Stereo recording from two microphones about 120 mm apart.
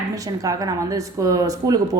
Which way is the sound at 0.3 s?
30° right (ahead or behind).